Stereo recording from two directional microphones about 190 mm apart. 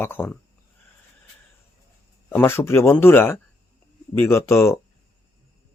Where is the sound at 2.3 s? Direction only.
10° left (ahead or behind).